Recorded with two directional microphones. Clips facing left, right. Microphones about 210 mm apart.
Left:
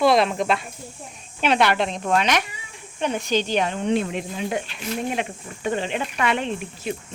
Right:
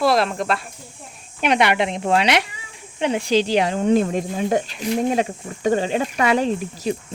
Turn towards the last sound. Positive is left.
turn(degrees=-35)  # may be behind; listen again after turning